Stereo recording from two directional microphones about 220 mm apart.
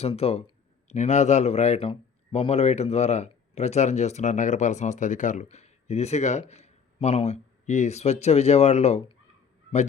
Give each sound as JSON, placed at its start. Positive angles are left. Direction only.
{"t": 0.0, "sound": "speech", "side_deg": 25}
{"t": 6.5, "sound": "a sound", "side_deg": 30}
{"t": 7.7, "sound": "speech", "side_deg": 30}